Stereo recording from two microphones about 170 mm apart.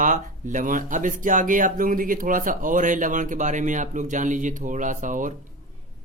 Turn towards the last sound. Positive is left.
turn(degrees=-50)  # may be behind; listen again after turning